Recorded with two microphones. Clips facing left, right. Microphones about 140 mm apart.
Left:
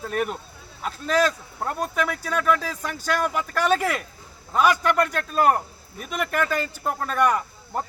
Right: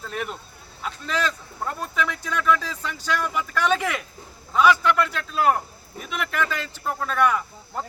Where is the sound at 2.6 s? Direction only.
45° left (ahead or behind).